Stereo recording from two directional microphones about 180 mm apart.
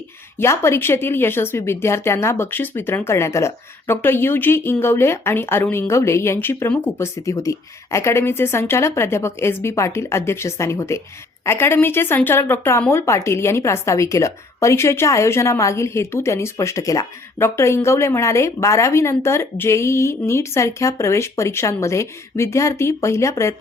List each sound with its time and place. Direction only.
0.3 s a woman's voice: 15° left (ahead or behind)